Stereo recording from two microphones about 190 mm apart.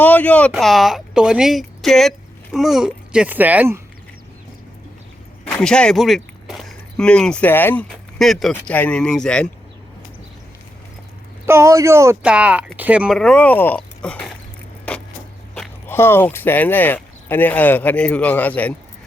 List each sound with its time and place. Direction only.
0.0 s speech: 10° left (ahead or behind); by 3.8 s 10° right (ahead or behind)
5.5 s speech: 5° left (ahead or behind)
11.4 s speech: 15° right (ahead or behind); by 14.3 s 5° left (ahead or behind)
14.9 s vehicle: 10° left (ahead or behind)
15.5 s speech: 10° left (ahead or behind)